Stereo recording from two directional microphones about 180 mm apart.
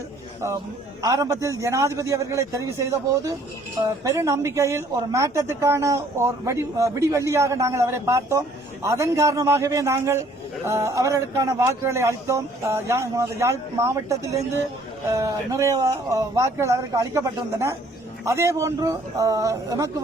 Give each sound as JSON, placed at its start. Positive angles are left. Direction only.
{"t": 1.0, "sound": "a woman's voice", "side_deg": -20}